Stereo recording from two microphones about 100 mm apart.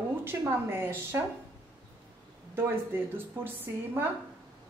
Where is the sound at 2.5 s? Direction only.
20° right (ahead or behind).